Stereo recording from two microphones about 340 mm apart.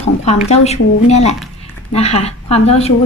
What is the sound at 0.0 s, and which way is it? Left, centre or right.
A woman's voice, centre.